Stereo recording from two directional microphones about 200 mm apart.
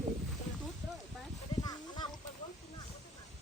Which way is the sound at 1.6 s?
20° left (ahead or behind).